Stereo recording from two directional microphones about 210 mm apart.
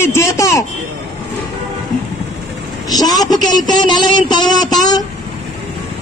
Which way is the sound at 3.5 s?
20° left (ahead or behind).